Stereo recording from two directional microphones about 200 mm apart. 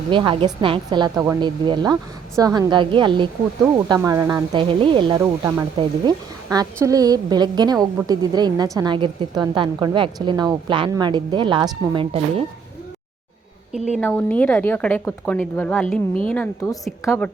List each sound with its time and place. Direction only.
0.1 s a woman's voice: 25° right (ahead or behind)
5.2 s speech: 10° right (ahead or behind)
5.7 s a woman's voice: 20° right (ahead or behind)
14.0 s a woman's voice: 10° left (ahead or behind)